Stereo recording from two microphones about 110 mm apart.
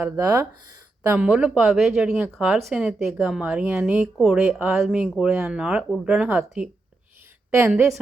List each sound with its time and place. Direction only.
0.0 s speech: 20° right (ahead or behind)
1.1 s a woman's voice: 10° right (ahead or behind)